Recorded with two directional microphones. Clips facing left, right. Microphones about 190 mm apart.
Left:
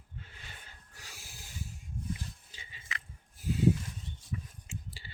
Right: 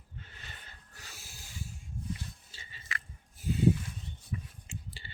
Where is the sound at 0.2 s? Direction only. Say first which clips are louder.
Even; 10° left (ahead or behind).